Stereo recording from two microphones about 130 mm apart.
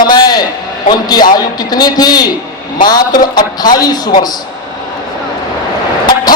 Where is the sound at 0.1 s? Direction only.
30° left (ahead or behind).